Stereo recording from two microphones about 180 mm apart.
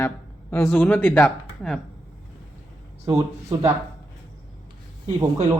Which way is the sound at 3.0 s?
20° right (ahead or behind).